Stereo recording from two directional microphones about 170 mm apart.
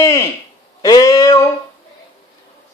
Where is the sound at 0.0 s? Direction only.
15° left (ahead or behind).